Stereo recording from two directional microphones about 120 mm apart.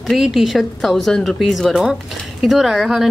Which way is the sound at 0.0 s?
Centre (ahead or behind).